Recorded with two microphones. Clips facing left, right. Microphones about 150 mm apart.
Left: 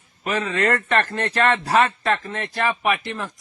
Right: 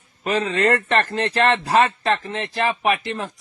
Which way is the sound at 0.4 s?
30° right (ahead or behind).